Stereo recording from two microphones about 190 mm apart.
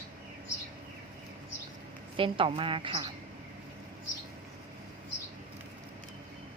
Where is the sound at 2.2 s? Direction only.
25° right (ahead or behind).